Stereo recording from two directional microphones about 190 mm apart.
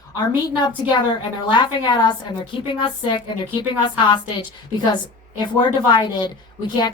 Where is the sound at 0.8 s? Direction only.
25° left (ahead or behind).